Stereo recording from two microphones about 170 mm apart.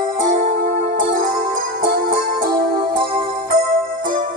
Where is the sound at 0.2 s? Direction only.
55° right (ahead or behind).